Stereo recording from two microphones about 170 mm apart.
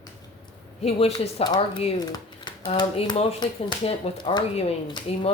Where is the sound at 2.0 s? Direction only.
25° left (ahead or behind).